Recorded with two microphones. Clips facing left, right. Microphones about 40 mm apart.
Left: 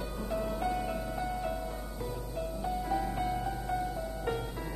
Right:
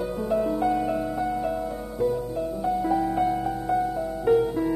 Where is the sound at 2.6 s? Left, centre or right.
Centre.